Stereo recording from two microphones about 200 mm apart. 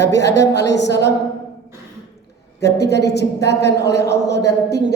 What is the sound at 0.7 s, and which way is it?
Speech, 60° left (ahead or behind).